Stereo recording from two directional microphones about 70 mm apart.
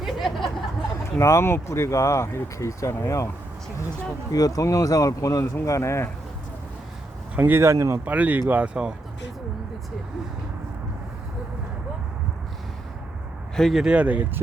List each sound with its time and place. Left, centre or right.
0.0 s a sound: centre
1.2 s speech: left
4.3 s speech: left
7.3 s speech: right
7.6 s speech: right
8.0 s speech: right
13.6 s speech: centre
13.8 s speech: centre